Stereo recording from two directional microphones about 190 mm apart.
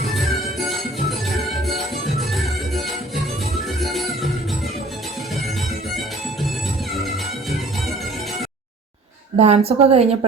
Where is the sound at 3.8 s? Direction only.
Centre (ahead or behind).